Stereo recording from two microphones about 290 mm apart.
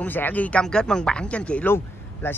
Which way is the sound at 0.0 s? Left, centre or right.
Centre.